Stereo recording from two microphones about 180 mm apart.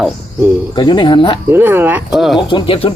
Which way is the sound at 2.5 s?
30° left (ahead or behind).